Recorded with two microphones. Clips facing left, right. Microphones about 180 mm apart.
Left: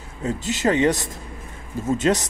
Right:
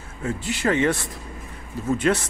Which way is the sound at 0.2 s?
20° left (ahead or behind).